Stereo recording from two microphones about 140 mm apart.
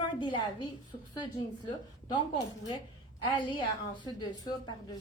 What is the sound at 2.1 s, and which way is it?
A woman's voice, 35° left (ahead or behind).